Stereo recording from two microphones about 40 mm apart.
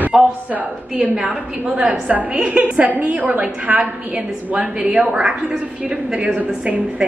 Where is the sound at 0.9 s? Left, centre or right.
Centre.